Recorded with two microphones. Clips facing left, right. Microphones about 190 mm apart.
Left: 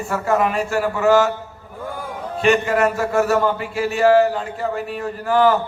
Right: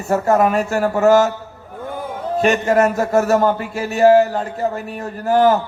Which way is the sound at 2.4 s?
40° right (ahead or behind).